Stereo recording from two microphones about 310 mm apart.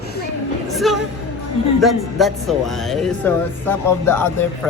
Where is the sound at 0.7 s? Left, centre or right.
Centre.